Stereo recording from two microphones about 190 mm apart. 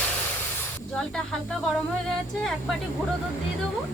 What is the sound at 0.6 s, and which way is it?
A woman's voice, 5° left (ahead or behind).